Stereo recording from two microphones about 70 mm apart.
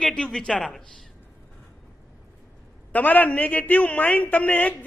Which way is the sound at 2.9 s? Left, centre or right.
Left.